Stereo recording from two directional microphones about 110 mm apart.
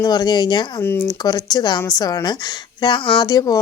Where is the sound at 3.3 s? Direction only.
35° left (ahead or behind).